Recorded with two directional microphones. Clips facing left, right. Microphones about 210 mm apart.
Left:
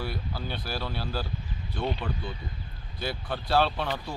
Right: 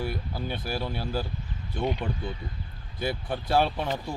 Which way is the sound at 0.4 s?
50° right (ahead or behind).